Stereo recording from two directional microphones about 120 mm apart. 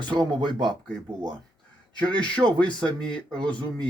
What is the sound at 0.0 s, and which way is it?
Speech, 40° right (ahead or behind).